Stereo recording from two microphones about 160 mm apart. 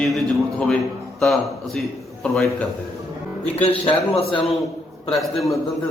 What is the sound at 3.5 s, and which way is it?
Speech, 35° left (ahead or behind).